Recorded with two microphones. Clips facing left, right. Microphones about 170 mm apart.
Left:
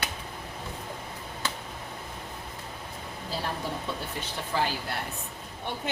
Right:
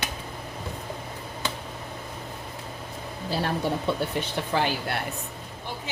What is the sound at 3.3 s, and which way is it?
Speech, 70° right (ahead or behind).